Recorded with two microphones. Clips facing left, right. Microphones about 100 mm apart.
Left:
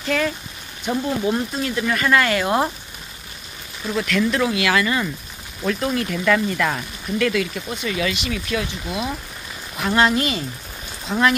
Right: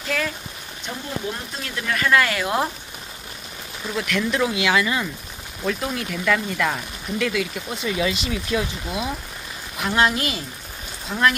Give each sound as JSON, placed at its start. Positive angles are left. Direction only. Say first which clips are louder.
{"t": 0.1, "sound": "speech", "louder": "left 4 dB", "side_deg": 0}
{"t": 0.8, "sound": "speech", "louder": "left 8 dB", "side_deg": 15}
{"t": 3.9, "sound": "speech", "louder": "left 3 dB", "side_deg": -10}
{"t": 7.7, "sound": "speech", "louder": "right 1 dB", "side_deg": -25}
{"t": 9.9, "sound": "speech", "louder": "left 3 dB", "side_deg": -5}
{"t": 11.1, "sound": "speech", "louder": "left 3 dB", "side_deg": 5}